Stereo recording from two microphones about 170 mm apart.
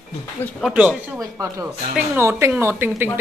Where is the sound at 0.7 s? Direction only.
10° right (ahead or behind).